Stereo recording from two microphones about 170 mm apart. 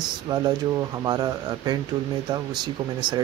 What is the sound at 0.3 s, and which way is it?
Speech, 25° right (ahead or behind).